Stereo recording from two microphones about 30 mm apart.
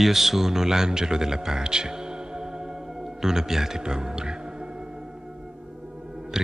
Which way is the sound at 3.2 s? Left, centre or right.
Centre.